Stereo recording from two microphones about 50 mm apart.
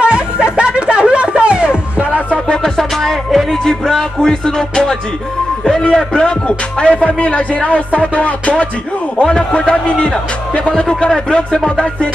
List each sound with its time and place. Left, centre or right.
0.0 s a sound: right
2.3 s music: centre
3.6 s music: centre